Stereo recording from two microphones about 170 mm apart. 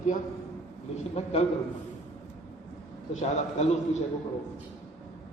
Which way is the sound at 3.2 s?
40° left (ahead or behind).